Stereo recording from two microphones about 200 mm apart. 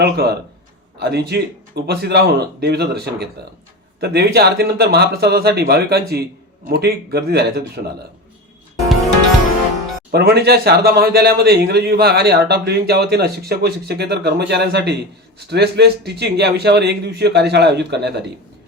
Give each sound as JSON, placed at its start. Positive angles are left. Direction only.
{"t": 0.0, "sound": "a man's voice", "side_deg": -55}
{"t": 10.1, "sound": "a man's voice", "side_deg": -55}